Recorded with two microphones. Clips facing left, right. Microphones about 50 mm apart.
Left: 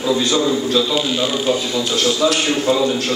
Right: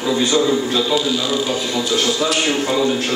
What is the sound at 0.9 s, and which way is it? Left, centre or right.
Speech, left.